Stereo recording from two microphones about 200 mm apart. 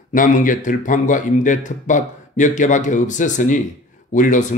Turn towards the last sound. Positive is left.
turn(degrees=40)  # may be behind; listen again after turning